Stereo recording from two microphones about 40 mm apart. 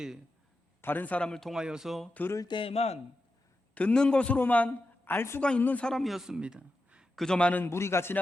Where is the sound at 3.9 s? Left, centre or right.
Left.